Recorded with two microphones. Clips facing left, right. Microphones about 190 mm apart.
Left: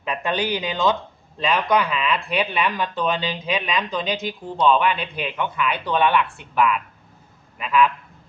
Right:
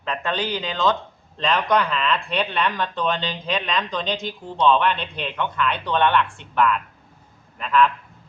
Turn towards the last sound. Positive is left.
turn(degrees=5)  # may be behind; listen again after turning